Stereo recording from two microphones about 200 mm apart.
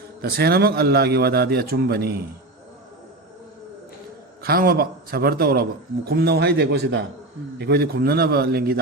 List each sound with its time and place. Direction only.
0.2 s a man's voice: 50° right (ahead or behind)
4.4 s a man's voice: 50° right (ahead or behind)